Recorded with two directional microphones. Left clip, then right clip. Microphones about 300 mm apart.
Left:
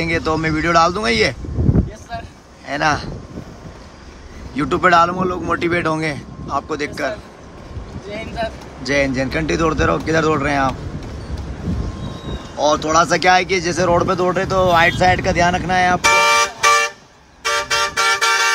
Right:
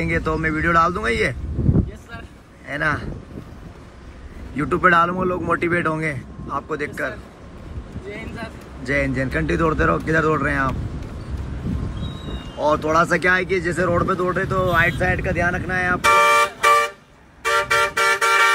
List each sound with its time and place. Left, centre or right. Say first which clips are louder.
0.0 s speech: left 3 dB; centre
2.7 s speech: left 5 dB; centre
4.6 s speech: left 3 dB; centre
12.5 s speech: left 3 dB; centre
15.1 s speech: left 6 dB; left
15.4 s speech: left 6 dB; centre
16.0 s vehicle: right 3 dB; left